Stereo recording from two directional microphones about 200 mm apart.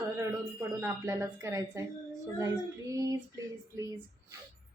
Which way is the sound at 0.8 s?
15° right (ahead or behind).